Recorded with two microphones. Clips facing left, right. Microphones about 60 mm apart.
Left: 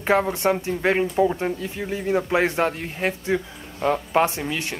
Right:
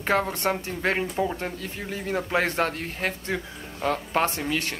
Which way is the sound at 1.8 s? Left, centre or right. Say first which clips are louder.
Left 6 dB; left.